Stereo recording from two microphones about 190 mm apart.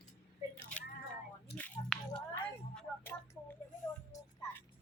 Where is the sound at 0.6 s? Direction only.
5° left (ahead or behind).